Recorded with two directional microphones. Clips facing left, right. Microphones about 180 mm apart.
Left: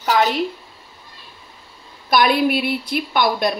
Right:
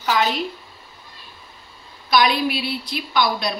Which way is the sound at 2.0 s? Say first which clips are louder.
Left 3 dB; 50° left (ahead or behind).